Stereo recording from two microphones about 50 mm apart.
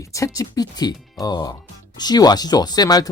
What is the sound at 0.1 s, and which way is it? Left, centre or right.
Speech, left.